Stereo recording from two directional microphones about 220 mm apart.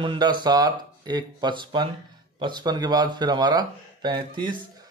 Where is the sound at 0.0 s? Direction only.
20° right (ahead or behind).